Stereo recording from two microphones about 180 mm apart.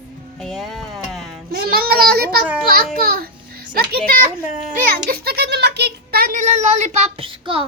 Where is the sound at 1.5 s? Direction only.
55° right (ahead or behind).